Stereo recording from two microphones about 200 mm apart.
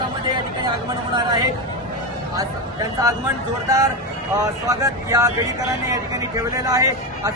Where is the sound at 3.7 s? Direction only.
15° right (ahead or behind).